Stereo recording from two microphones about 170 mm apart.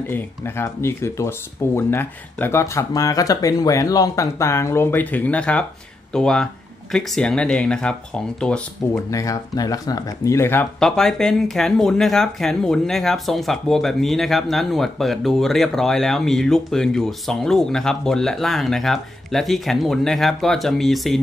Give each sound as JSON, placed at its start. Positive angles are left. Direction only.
{"t": 0.1, "sound": "speech", "side_deg": 15}
{"t": 9.1, "sound": "speech", "side_deg": 20}
{"t": 10.8, "sound": "speech", "side_deg": 5}